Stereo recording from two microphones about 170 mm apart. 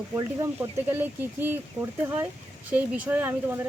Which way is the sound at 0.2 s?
15° right (ahead or behind).